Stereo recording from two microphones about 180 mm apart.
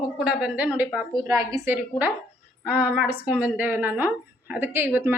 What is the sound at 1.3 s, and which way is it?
A woman's voice, 20° right (ahead or behind).